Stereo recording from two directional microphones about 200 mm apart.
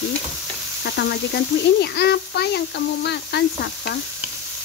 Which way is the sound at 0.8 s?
55° left (ahead or behind).